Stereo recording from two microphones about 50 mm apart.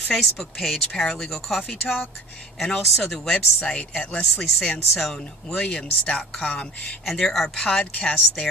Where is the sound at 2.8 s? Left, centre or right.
Centre.